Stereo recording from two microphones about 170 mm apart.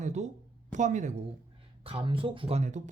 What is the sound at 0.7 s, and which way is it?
Speech, 45° right (ahead or behind).